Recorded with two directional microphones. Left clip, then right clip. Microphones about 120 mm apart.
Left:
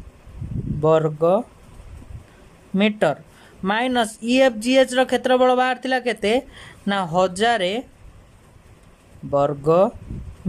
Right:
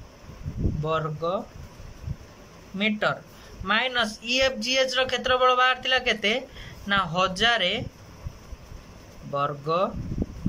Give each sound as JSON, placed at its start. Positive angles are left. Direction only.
{"t": 0.8, "sound": "a man's voice", "side_deg": 60}
{"t": 2.8, "sound": "a man's voice", "side_deg": 60}
{"t": 9.3, "sound": "speech", "side_deg": 50}